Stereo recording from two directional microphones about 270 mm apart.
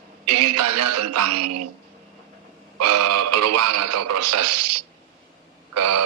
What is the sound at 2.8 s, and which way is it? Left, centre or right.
Radio, right.